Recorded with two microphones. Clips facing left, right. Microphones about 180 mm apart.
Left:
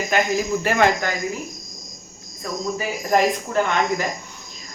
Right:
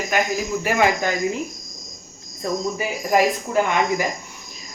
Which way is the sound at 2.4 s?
30° right (ahead or behind).